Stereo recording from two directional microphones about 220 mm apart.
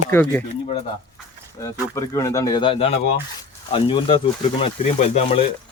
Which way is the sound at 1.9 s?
15° left (ahead or behind).